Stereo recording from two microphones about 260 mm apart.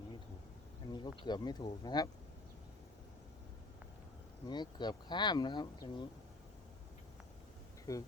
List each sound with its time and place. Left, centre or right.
0.9 s speech: centre
4.4 s speech: centre
7.9 s speech: centre